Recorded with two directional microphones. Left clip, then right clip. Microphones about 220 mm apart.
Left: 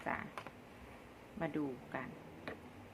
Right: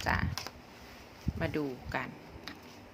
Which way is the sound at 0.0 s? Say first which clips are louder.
Right 9 dB; 30° right (ahead or behind).